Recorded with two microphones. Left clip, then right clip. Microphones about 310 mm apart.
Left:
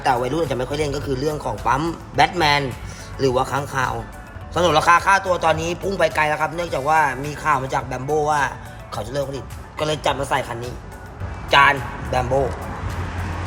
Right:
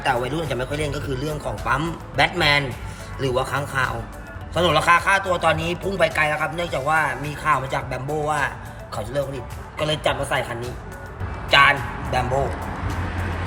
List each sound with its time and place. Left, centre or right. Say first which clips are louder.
0.0 s a man's voice: left 3 dB; left